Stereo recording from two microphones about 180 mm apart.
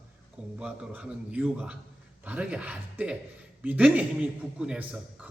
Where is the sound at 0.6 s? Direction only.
5° right (ahead or behind).